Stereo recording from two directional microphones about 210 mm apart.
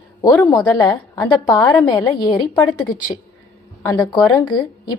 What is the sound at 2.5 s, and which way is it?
Speech, 10° left (ahead or behind).